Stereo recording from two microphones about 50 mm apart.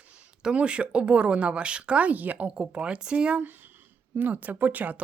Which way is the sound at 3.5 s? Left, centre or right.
Right.